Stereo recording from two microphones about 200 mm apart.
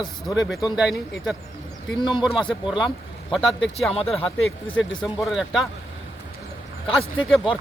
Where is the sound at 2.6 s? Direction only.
5° right (ahead or behind).